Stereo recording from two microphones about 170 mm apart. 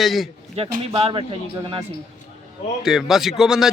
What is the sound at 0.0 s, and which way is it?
Speech, centre (ahead or behind).